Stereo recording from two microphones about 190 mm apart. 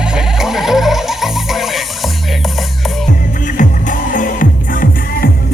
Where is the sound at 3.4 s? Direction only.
40° left (ahead or behind).